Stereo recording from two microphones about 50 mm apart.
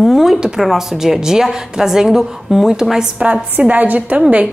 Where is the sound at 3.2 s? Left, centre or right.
Right.